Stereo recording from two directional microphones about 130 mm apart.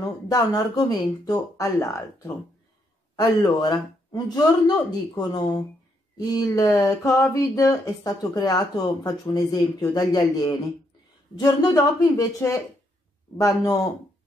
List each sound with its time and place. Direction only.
0.0 s speech: 30° left (ahead or behind)